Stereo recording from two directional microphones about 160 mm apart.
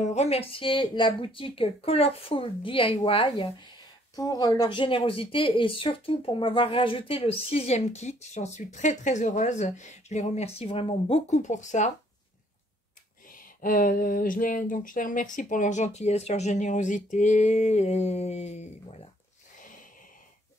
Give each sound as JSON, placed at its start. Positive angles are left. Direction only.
{"t": 0.0, "sound": "speech", "side_deg": 45}
{"t": 13.6, "sound": "speech", "side_deg": 60}